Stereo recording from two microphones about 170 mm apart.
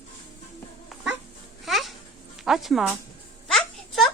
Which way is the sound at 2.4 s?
Centre (ahead or behind).